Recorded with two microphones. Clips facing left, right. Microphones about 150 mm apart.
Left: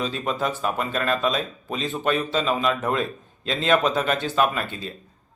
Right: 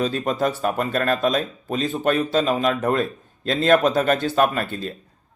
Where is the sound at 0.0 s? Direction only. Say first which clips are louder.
Right 4 dB; 45° right (ahead or behind).